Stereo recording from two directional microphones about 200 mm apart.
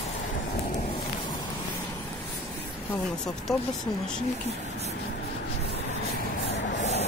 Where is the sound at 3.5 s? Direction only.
Centre (ahead or behind).